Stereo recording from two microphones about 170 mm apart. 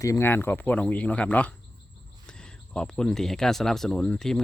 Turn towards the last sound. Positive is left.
turn(degrees=5)  # may be behind; listen again after turning